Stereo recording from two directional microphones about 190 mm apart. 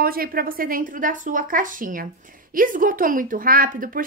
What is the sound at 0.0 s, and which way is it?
A woman's voice, 50° right (ahead or behind).